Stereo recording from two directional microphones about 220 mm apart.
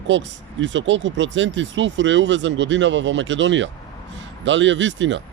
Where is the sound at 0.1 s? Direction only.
55° right (ahead or behind).